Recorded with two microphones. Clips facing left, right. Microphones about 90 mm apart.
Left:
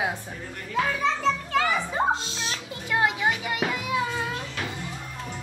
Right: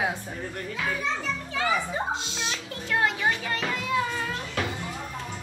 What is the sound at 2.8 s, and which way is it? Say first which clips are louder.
Children playing: left 1 dB; 15° left (ahead or behind).